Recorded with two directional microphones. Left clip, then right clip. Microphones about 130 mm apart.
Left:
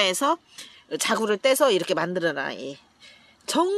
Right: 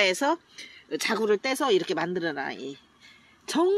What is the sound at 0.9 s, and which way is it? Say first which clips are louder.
Speech: left 1 dB; 90° left.